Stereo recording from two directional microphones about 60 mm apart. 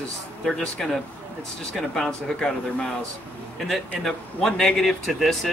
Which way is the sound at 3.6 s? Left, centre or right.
Centre.